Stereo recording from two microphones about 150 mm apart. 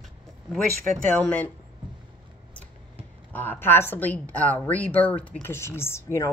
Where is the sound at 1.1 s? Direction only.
10° left (ahead or behind).